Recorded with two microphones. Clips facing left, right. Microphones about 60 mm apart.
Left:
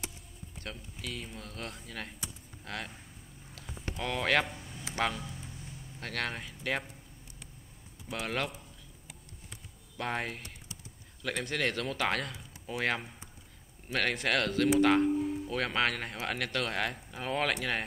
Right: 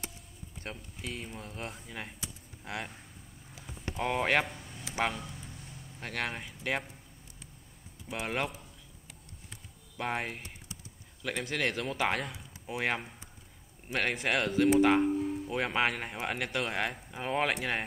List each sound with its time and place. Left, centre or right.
0.7 s speech: right
4.0 s speech: centre
4.5 s a sound: centre
4.9 s speech: centre
8.1 s speech: centre
9.9 s speech: centre